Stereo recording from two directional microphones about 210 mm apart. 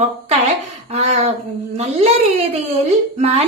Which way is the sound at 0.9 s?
30° right (ahead or behind).